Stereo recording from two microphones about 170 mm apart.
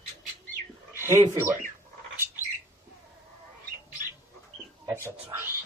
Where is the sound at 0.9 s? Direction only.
15° right (ahead or behind).